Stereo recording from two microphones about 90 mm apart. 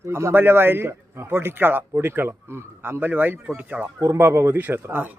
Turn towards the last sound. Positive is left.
turn(degrees=-25)  # may be behind; listen again after turning